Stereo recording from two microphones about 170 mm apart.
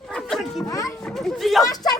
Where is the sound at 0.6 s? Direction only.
20° left (ahead or behind).